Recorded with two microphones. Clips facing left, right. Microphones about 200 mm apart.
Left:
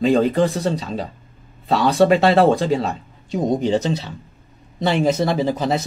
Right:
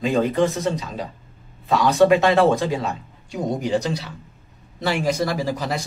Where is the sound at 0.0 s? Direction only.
35° left (ahead or behind).